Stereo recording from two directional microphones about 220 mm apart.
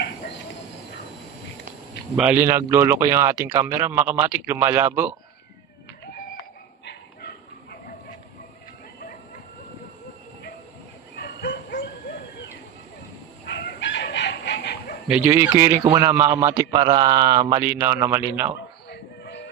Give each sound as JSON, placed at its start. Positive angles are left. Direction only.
{"t": 2.1, "sound": "a man's voice", "side_deg": -10}
{"t": 6.8, "sound": "dog", "side_deg": 50}
{"t": 11.1, "sound": "bow-wow", "side_deg": 50}
{"t": 13.5, "sound": "chicken", "side_deg": 50}
{"t": 15.0, "sound": "a man's voice", "side_deg": -10}
{"t": 18.9, "sound": "music", "side_deg": 50}